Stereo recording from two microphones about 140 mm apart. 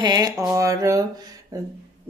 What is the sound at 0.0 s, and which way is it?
Speech, 30° right (ahead or behind).